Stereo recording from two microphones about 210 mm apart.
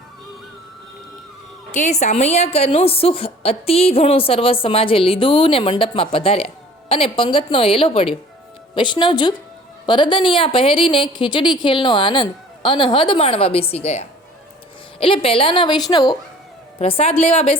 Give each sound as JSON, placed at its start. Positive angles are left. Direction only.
{"t": 1.7, "sound": "a woman's voice", "side_deg": 35}